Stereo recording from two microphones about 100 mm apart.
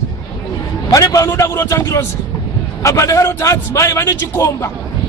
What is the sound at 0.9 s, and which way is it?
A man's voice, 35° left (ahead or behind).